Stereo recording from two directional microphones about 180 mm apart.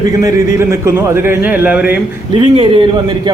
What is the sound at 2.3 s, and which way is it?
Speech, 25° right (ahead or behind).